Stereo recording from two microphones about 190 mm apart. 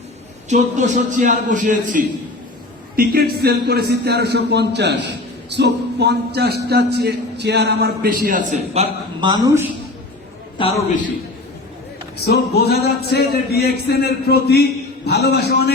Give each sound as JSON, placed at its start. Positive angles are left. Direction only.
{"t": 0.5, "sound": "a man's voice", "side_deg": -40}
{"t": 8.7, "sound": "a man's voice", "side_deg": -35}
{"t": 9.3, "sound": "a man's voice", "side_deg": -15}
{"t": 10.6, "sound": "a man's voice", "side_deg": 25}
{"t": 12.2, "sound": "a man's voice", "side_deg": 60}